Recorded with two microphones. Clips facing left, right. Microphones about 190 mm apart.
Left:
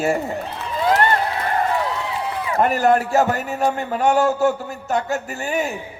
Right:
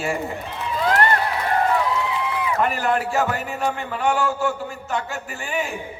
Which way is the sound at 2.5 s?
40° left (ahead or behind).